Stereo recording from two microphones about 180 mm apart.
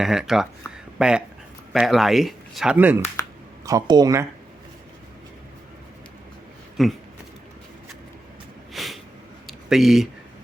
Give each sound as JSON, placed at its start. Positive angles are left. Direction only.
{"t": 0.0, "sound": "speech", "side_deg": 0}
{"t": 3.7, "sound": "speech", "side_deg": -20}
{"t": 6.8, "sound": "speech", "side_deg": 0}
{"t": 8.7, "sound": "snort", "side_deg": 0}
{"t": 9.5, "sound": "speech", "side_deg": 0}